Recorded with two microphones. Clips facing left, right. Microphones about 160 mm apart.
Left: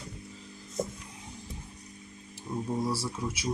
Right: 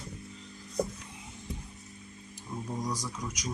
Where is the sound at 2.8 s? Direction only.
10° left (ahead or behind).